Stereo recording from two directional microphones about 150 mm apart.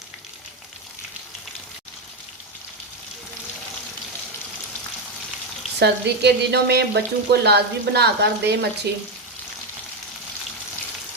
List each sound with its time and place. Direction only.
5.8 s frying: 90° right